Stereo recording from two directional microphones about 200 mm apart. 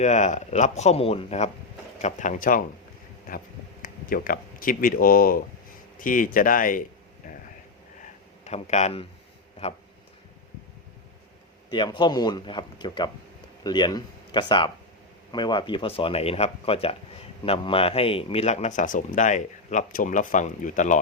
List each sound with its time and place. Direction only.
0.0 s speech: 35° left (ahead or behind)
3.3 s a sound: 45° left (ahead or behind)
3.8 s speech: 45° left (ahead or behind)
8.4 s speech: 35° left (ahead or behind)
11.7 s speech: 25° left (ahead or behind); by 21.0 s 40° left (ahead or behind)